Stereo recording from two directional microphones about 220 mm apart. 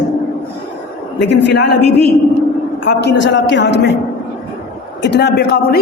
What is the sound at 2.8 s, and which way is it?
A woman's voice, 50° left (ahead or behind).